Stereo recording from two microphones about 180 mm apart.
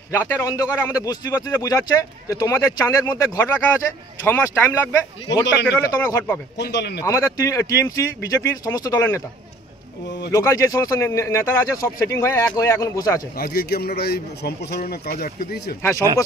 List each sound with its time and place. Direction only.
0.1 s a man's voice: 15° left (ahead or behind)
6.6 s a man's voice: 65° left (ahead or behind)
7.0 s speech: 15° left (ahead or behind)
10.0 s a man's voice: 70° left (ahead or behind)
10.3 s speech: 15° left (ahead or behind)
13.4 s a man's voice: 60° left (ahead or behind)
15.8 s speech: 15° left (ahead or behind)